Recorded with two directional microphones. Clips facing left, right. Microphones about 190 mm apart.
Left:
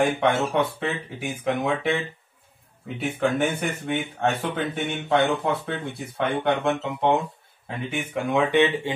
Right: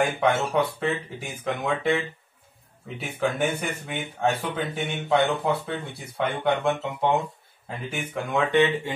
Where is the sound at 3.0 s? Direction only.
Centre (ahead or behind).